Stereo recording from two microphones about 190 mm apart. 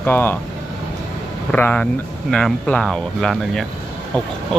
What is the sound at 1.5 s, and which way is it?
Speech, 10° left (ahead or behind).